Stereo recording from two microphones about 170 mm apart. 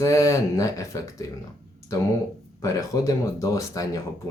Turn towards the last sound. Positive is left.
turn(degrees=20)  # may be behind; listen again after turning